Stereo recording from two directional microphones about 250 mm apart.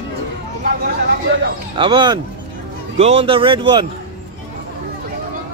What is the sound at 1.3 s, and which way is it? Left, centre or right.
Speech, right.